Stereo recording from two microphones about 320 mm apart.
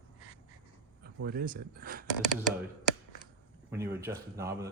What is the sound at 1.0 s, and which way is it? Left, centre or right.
Speech, right.